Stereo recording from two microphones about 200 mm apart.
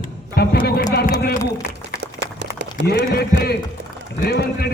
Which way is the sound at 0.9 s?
50° left (ahead or behind).